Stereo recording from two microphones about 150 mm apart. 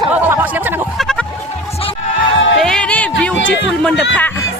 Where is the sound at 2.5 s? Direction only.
5° left (ahead or behind).